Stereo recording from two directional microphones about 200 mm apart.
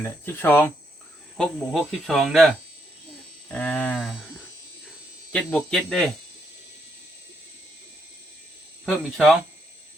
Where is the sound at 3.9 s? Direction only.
Centre (ahead or behind).